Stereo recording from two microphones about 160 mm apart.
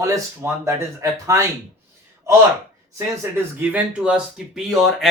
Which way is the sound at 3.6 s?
10° right (ahead or behind).